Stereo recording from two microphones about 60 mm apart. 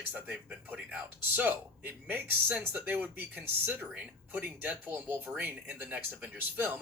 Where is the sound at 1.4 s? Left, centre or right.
Right.